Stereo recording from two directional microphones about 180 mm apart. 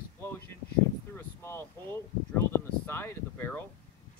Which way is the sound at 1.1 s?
15° left (ahead or behind).